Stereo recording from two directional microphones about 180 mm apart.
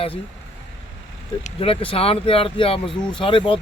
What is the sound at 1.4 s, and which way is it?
Speech, 30° left (ahead or behind).